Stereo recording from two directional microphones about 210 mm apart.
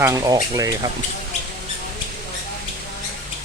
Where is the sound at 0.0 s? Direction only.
15° right (ahead or behind).